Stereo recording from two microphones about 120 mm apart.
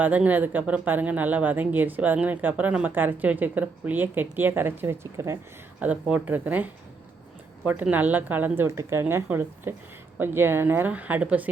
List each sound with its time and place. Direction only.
0.0 s a woman's voice: 15° right (ahead or behind)
5.8 s a woman's voice: 10° right (ahead or behind)
7.7 s a woman's voice: 15° right (ahead or behind)